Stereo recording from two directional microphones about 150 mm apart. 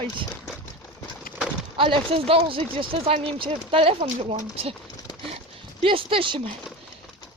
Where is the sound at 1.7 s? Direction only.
35° right (ahead or behind).